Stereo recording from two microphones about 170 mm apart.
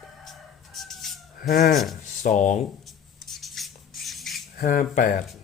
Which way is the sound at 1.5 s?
50° left (ahead or behind).